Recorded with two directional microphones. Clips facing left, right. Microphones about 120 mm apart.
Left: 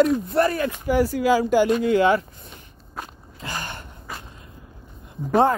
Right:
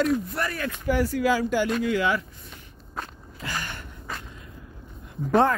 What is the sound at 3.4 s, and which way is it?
Gasp, 25° left (ahead or behind).